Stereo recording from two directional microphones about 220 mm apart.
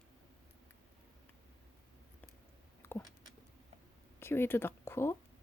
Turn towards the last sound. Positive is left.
turn(degrees=10)  # may be behind; listen again after turning